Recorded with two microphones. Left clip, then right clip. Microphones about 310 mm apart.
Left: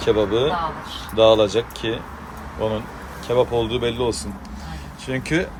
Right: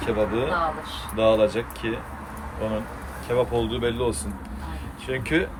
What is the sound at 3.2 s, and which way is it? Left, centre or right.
Speech, centre.